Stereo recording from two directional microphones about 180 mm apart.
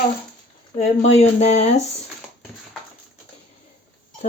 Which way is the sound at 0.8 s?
40° left (ahead or behind).